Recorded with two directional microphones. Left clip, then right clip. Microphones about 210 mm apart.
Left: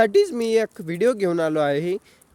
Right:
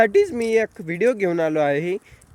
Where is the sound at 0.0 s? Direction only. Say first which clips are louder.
Right 1 dB; 15° left (ahead or behind).